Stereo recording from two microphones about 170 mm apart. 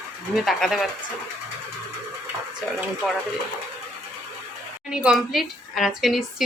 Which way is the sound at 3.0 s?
Centre (ahead or behind).